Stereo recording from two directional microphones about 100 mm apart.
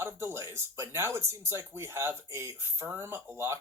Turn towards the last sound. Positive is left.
turn(degrees=-25)  # may be behind; listen again after turning